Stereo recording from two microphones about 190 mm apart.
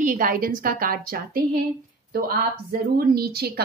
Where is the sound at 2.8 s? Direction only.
55° right (ahead or behind).